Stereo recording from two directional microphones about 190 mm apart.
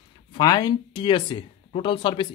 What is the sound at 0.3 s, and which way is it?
Speech, 20° left (ahead or behind).